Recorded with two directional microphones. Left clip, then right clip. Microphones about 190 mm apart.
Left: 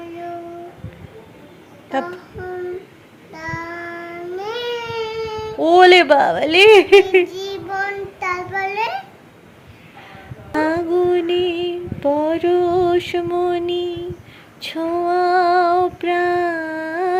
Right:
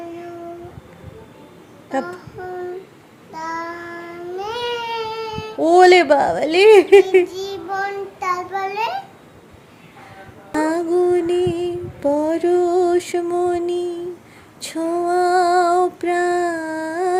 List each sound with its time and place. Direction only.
1.9 s child singing: 10° right (ahead or behind)
10.6 s music: 15° right (ahead or behind)
12.2 s a sound: 10° right (ahead or behind)
14.9 s child singing: 20° right (ahead or behind)